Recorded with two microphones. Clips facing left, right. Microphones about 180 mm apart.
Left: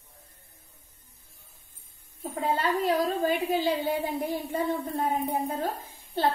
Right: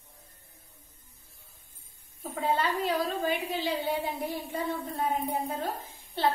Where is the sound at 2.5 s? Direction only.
50° left (ahead or behind).